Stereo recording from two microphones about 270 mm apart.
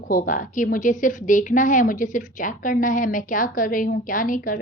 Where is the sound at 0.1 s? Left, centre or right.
Left.